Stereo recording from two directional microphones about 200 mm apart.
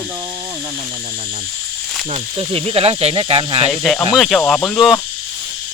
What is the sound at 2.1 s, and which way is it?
Speech, 30° right (ahead or behind).